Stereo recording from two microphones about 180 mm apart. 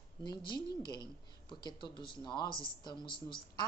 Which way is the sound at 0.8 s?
25° left (ahead or behind).